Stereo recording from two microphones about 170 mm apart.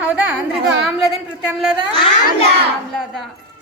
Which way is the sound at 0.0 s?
5° right (ahead or behind).